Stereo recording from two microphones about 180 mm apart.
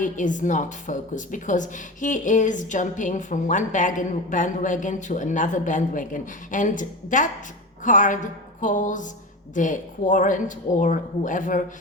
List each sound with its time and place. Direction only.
0.0 s a woman's voice: 45° left (ahead or behind)